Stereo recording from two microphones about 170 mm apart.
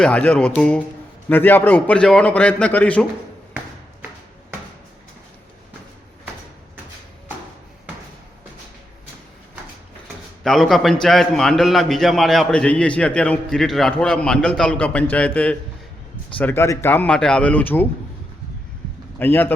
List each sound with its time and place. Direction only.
0.0 s a man's voice: 10° left (ahead or behind)
10.4 s a man's voice: centre (ahead or behind)
19.2 s a man's voice: 10° left (ahead or behind)